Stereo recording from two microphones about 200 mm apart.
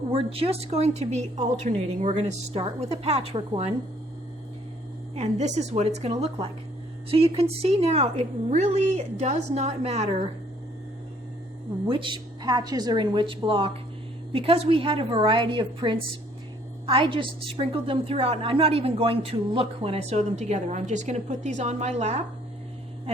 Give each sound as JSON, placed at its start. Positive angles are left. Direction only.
{"t": 0.1, "sound": "a woman's voice", "side_deg": -30}
{"t": 5.1, "sound": "a woman's voice", "side_deg": -35}
{"t": 11.9, "sound": "a woman's voice", "side_deg": -25}